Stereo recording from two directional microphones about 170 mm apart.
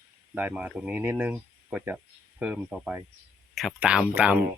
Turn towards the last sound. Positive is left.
turn(degrees=-10)  # may be behind; listen again after turning